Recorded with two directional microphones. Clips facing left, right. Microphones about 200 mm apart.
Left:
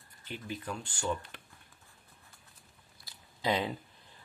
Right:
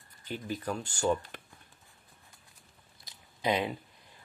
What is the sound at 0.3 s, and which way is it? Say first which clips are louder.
Speech: right 4 dB; 40° right (ahead or behind).